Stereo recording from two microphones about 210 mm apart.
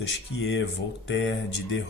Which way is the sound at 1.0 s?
60° left (ahead or behind).